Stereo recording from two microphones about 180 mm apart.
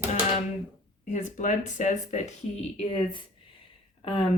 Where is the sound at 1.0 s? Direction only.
45° left (ahead or behind).